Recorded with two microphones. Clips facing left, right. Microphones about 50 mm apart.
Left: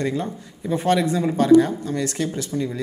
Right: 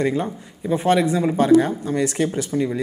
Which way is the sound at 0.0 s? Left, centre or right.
Right.